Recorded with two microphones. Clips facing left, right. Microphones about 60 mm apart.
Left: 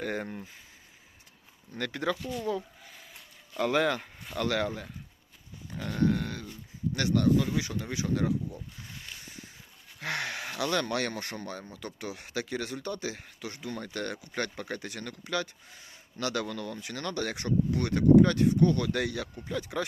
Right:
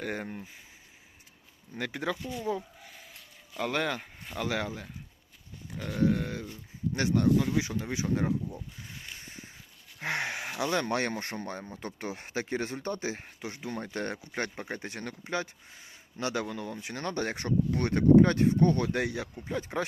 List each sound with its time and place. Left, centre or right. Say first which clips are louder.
0.0 s speech: left 2 dB; centre
1.7 s speech: left 2 dB; centre
3.5 s speech: left 4 dB; centre
6.3 s speech: right 2 dB; centre
8.4 s speech: even; centre
16.9 s speech: right 1 dB; right
18.9 s speech: even; right